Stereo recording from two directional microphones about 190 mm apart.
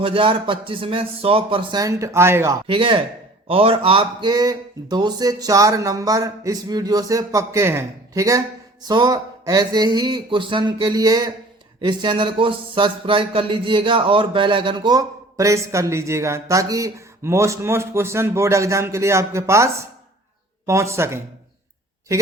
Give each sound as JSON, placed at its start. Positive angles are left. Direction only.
{"t": 0.0, "sound": "speech", "side_deg": -30}
{"t": 2.6, "sound": "speech", "side_deg": -25}